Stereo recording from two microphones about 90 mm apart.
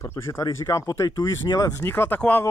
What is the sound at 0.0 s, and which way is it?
Speech, 30° left (ahead or behind).